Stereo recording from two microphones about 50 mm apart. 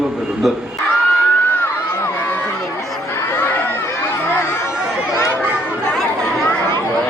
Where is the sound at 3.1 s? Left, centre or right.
Left.